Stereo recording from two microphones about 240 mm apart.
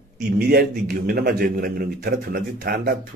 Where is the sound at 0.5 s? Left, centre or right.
Right.